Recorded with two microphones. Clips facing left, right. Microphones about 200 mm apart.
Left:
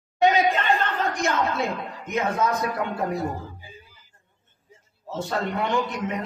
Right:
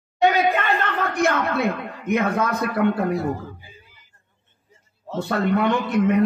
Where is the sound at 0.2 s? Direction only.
60° right (ahead or behind).